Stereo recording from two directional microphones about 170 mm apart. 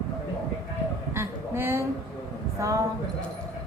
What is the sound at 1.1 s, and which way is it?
A woman's voice, 15° right (ahead or behind).